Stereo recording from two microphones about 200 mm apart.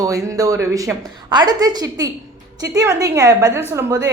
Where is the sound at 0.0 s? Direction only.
15° right (ahead or behind).